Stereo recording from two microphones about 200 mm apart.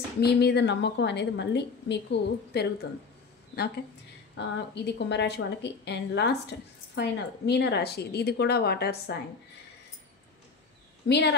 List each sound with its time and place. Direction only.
0.2 s a woman's voice: 55° left (ahead or behind)
4.4 s a woman's voice: 60° left (ahead or behind)
11.1 s a woman's voice: 60° left (ahead or behind)